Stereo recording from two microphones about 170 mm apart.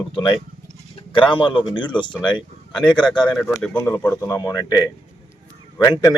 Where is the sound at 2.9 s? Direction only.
5° left (ahead or behind).